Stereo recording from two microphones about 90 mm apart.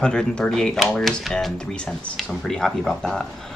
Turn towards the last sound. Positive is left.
turn(degrees=5)  # may be behind; listen again after turning